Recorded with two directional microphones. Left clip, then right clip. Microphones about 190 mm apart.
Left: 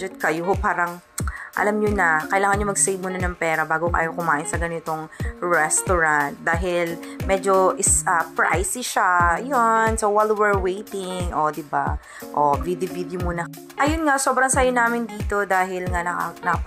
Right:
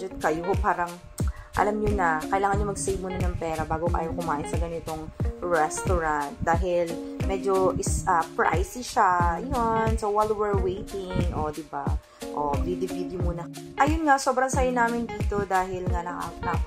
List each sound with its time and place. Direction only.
0.0 s speech: 15° left (ahead or behind)
11.3 s speech: 25° left (ahead or behind)